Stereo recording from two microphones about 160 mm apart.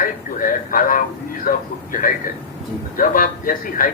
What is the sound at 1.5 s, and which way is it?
A man's voice, 60° left (ahead or behind).